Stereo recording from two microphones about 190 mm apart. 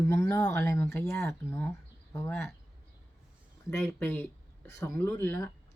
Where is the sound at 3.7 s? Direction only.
10° left (ahead or behind).